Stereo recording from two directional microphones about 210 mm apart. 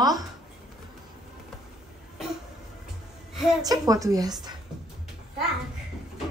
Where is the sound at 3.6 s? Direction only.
15° right (ahead or behind).